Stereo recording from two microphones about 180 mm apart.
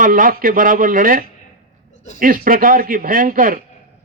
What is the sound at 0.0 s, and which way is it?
A man's voice, 50° right (ahead or behind).